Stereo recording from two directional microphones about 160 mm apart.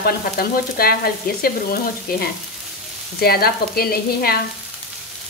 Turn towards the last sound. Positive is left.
turn(degrees=70)  # may be behind; listen again after turning